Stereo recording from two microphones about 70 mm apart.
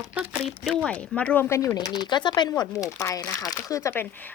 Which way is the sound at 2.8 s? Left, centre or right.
Left.